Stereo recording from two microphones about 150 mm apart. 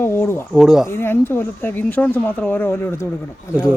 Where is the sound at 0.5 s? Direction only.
5° right (ahead or behind).